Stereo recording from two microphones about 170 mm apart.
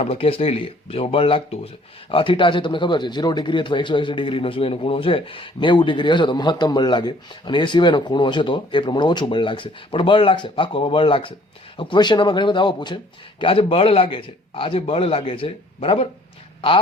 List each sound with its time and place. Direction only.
0.0 s a man's voice: 35° left (ahead or behind)